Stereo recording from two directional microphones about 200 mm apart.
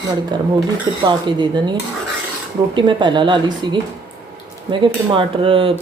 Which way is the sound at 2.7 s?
25° right (ahead or behind).